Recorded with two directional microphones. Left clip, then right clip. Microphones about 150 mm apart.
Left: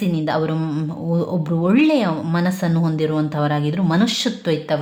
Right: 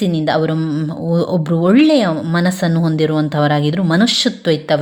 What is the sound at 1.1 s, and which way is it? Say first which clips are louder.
Speech: right 6 dB; 30° right (ahead or behind).